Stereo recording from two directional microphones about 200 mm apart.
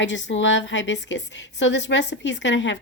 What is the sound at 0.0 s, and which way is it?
A woman's voice, 65° left (ahead or behind).